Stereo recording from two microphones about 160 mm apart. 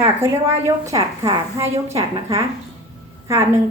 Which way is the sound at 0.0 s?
15° right (ahead or behind).